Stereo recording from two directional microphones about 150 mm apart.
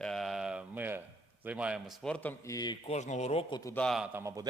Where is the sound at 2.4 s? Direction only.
25° left (ahead or behind).